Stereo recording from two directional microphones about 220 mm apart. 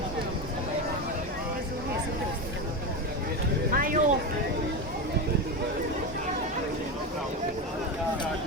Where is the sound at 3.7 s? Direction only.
40° right (ahead or behind).